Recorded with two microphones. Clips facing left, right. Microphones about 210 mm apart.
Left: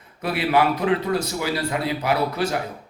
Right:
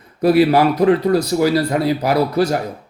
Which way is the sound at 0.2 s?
40° right (ahead or behind).